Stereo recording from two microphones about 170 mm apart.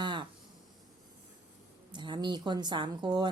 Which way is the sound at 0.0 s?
30° right (ahead or behind).